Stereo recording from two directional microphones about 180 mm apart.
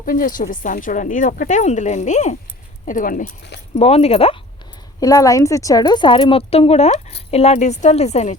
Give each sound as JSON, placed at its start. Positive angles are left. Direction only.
{"t": 0.0, "sound": "speech", "side_deg": 50}
{"t": 3.8, "sound": "a woman's voice", "side_deg": 35}
{"t": 4.9, "sound": "a woman's voice", "side_deg": 20}